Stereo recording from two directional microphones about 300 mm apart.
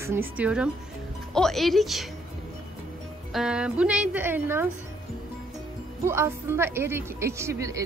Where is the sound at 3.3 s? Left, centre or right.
Centre.